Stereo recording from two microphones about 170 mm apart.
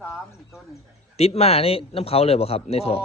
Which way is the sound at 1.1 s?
40° left (ahead or behind).